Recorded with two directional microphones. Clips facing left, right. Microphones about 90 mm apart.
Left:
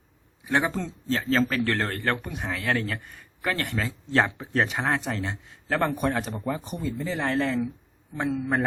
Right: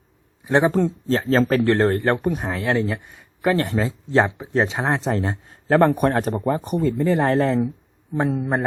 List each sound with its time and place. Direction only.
0.4 s speech: 30° right (ahead or behind)
1.6 s speech: 25° right (ahead or behind)
2.2 s speech: 40° right (ahead or behind)
2.6 s speech: 20° right (ahead or behind); by 5.8 s 40° right (ahead or behind)
5.8 s speech: 55° right (ahead or behind)
7.2 s speech: 35° right (ahead or behind)